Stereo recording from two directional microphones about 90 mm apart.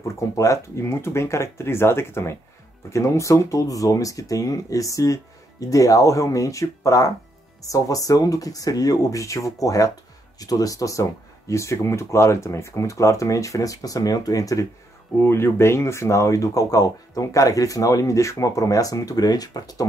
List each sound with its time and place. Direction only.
0.1 s speech: 35° left (ahead or behind)
15.2 s speech: 30° left (ahead or behind); by 19.9 s 45° left (ahead or behind)